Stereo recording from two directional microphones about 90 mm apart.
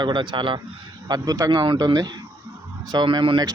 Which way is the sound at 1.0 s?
45° right (ahead or behind).